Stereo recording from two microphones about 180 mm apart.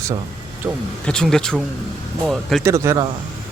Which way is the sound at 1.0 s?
5° left (ahead or behind).